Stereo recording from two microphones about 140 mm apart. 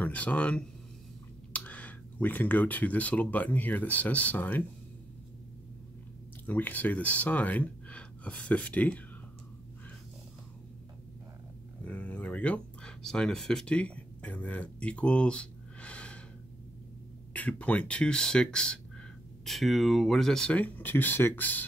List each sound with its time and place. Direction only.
0.0 s speech: 10° left (ahead or behind)
6.4 s speech: 10° left (ahead or behind)
11.8 s a sound: 10° left (ahead or behind)
17.3 s speech: 10° left (ahead or behind)